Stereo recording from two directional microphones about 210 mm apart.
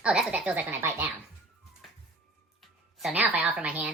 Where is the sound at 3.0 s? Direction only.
5° right (ahead or behind).